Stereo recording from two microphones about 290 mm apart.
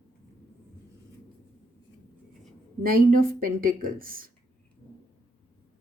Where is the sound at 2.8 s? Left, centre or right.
Right.